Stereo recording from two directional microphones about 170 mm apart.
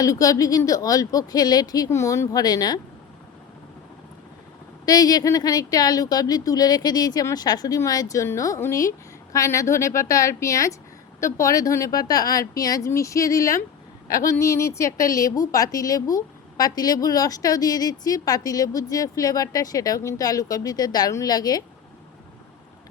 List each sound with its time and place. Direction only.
0.0 s a woman's voice: 20° left (ahead or behind)
4.9 s a woman's voice: 20° left (ahead or behind)